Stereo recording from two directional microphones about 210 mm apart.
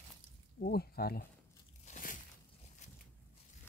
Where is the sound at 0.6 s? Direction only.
45° left (ahead or behind).